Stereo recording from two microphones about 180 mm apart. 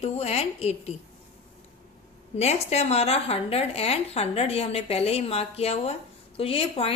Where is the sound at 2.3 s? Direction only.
35° left (ahead or behind).